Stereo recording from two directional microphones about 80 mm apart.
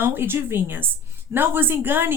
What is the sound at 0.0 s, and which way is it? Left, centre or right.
A woman's voice, right.